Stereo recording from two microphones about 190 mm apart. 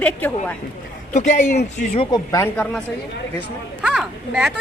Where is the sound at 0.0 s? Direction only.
10° left (ahead or behind).